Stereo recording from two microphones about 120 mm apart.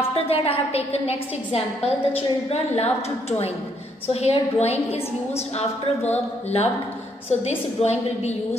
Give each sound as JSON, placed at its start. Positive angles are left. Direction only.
{"t": 0.1, "sound": "a woman's voice", "side_deg": 55}